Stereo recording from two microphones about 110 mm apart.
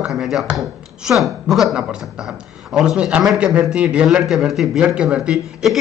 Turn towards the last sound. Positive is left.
turn(degrees=-5)  # may be behind; listen again after turning